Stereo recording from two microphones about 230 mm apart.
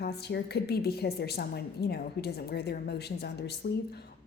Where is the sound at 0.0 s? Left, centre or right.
Left.